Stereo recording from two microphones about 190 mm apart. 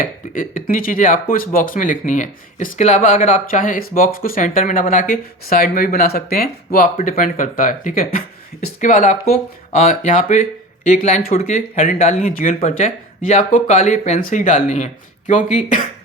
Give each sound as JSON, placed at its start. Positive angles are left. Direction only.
{"t": 0.0, "sound": "speech", "side_deg": 45}